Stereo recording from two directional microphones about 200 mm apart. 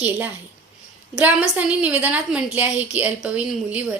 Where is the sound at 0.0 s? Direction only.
10° right (ahead or behind).